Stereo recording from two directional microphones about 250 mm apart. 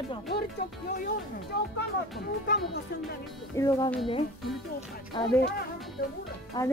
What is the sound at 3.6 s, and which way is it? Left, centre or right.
A woman's voice, centre.